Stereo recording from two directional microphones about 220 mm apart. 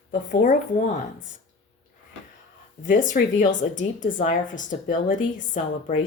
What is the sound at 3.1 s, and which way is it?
A woman's voice, 35° left (ahead or behind).